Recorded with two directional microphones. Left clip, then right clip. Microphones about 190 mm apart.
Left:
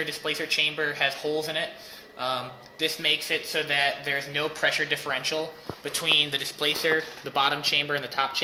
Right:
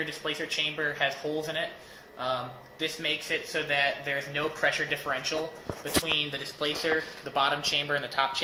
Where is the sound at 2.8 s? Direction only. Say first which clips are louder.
Left 5 dB; 30° left (ahead or behind).